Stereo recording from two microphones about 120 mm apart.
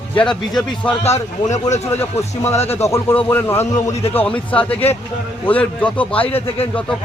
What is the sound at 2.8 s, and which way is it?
A man's voice, 25° left (ahead or behind).